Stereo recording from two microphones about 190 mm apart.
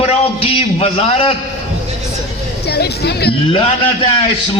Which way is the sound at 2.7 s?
60° left (ahead or behind).